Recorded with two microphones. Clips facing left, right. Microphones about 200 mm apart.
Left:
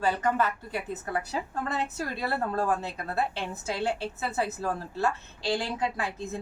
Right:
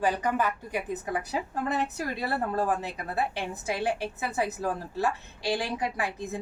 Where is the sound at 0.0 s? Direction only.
15° right (ahead or behind).